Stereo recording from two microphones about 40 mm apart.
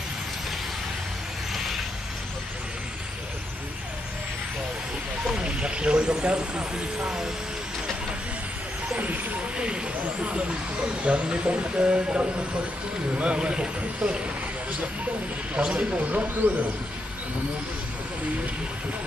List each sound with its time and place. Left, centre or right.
5.2 s speech: centre
8.9 s speech: right
10.9 s speech: right
15.5 s speech: right